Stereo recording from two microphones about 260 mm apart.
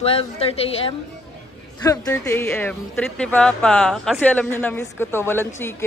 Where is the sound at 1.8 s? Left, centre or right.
Centre.